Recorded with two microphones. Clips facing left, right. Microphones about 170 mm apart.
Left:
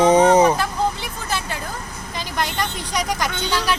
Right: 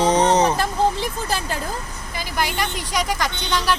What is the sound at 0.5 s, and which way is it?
Speech, 35° right (ahead or behind).